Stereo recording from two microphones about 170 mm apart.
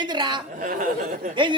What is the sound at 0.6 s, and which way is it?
Speech, 55° right (ahead or behind).